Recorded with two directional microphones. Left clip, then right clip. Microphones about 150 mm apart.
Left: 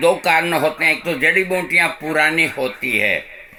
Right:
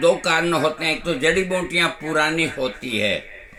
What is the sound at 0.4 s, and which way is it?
Speech, 25° right (ahead or behind).